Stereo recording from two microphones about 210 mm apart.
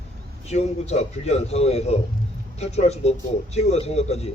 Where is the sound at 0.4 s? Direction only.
30° left (ahead or behind).